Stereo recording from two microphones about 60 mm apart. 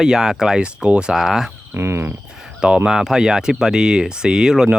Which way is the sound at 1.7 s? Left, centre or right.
Right.